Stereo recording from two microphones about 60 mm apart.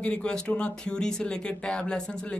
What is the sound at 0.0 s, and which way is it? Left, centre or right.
Speech, centre.